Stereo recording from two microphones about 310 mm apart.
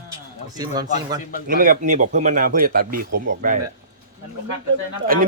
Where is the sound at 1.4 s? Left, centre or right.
Right.